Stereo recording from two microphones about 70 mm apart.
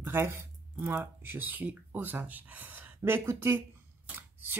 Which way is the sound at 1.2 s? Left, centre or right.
Right.